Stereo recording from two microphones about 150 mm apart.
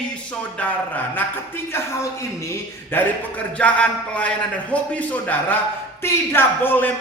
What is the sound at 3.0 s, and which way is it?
A man's voice, 15° left (ahead or behind).